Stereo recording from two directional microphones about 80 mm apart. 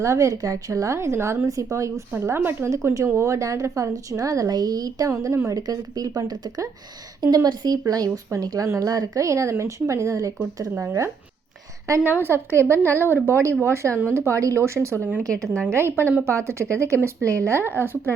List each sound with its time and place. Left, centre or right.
0.0 s speech: right
2.1 s a woman's voice: right
11.9 s a woman's voice: right
12.2 s speech: right